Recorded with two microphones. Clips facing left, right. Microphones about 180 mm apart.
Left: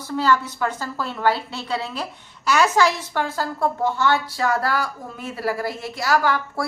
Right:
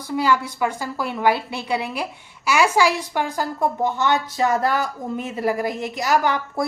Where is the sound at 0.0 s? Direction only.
10° right (ahead or behind).